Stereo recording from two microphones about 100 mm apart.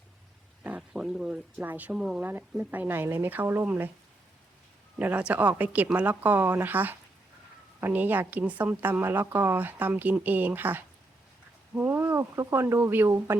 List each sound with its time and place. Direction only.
0.6 s a sound: 10° right (ahead or behind)
1.3 s speech: 15° right (ahead or behind)
2.2 s a woman's voice: 20° right (ahead or behind)
4.9 s a woman's voice: 15° right (ahead or behind)